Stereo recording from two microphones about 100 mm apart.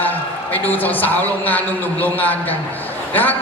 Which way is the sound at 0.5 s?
15° left (ahead or behind).